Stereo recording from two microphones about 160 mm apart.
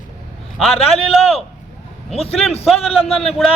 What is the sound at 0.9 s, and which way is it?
A man's voice, 40° left (ahead or behind).